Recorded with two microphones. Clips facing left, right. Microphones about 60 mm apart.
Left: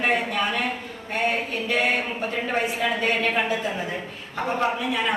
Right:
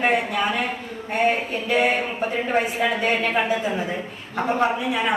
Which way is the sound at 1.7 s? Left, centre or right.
Centre.